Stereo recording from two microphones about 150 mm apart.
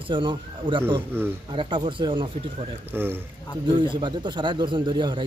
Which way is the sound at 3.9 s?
30° right (ahead or behind).